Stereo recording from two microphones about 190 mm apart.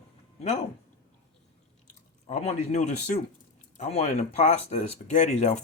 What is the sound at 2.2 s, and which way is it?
Speech, 35° left (ahead or behind).